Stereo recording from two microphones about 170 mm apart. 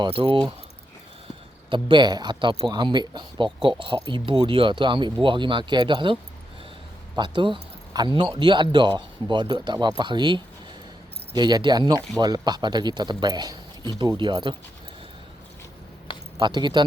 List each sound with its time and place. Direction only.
0.0 s speech: 30° right (ahead or behind)
1.7 s speech: 30° right (ahead or behind)
7.2 s speech: 30° right (ahead or behind)
16.4 s speech: 25° right (ahead or behind)